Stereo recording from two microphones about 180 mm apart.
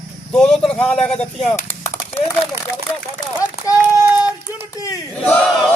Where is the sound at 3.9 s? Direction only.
15° right (ahead or behind).